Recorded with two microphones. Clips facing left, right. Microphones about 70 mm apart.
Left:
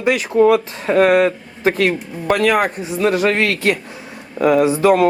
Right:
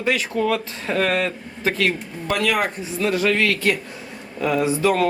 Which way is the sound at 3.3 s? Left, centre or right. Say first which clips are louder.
Left 3 dB; left.